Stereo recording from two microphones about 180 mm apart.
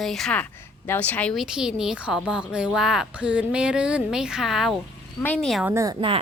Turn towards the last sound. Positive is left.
turn(degrees=-15)  # may be behind; listen again after turning